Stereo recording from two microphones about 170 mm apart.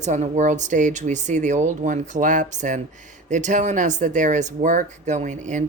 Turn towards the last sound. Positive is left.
turn(degrees=-45)  # may be behind; listen again after turning